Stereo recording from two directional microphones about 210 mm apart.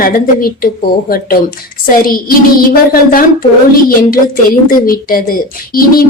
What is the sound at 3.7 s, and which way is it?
A woman's voice, 45° left (ahead or behind).